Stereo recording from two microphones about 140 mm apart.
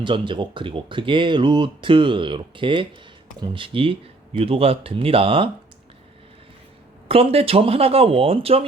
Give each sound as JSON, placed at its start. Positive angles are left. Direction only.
{"t": 0.0, "sound": "speech", "side_deg": -35}
{"t": 7.1, "sound": "speech", "side_deg": -45}